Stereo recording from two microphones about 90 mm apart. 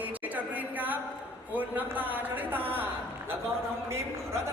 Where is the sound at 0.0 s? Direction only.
20° right (ahead or behind).